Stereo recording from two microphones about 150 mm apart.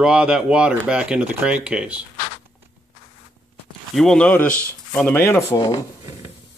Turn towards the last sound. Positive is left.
turn(degrees=25)  # may be behind; listen again after turning